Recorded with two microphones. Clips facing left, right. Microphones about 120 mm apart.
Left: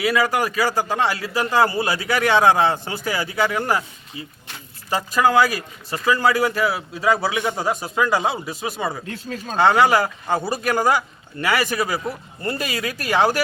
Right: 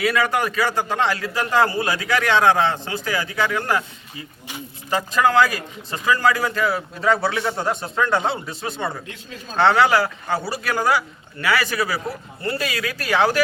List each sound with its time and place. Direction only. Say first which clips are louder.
0.1 s a man's voice: left 1 dB; 5° left (ahead or behind)
4.9 s a man's voice: even; 10° left (ahead or behind)
9.0 s speech: left 6 dB; 40° left (ahead or behind)
9.6 s speech: even; 5° left (ahead or behind)
9.9 s a man's voice: left 1 dB; 15° left (ahead or behind)